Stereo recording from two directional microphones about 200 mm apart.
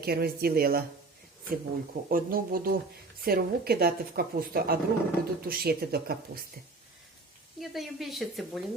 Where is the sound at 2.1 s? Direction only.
45° right (ahead or behind).